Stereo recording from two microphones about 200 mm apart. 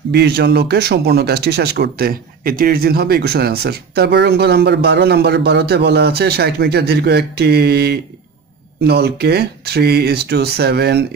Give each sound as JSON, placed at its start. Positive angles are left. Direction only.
{"t": 0.1, "sound": "speech", "side_deg": -55}